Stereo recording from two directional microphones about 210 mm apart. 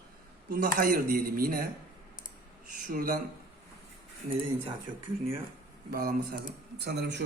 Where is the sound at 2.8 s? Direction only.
40° right (ahead or behind).